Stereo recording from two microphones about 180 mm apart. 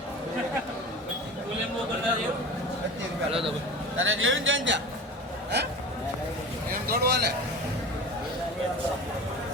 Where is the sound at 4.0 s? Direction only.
90° right.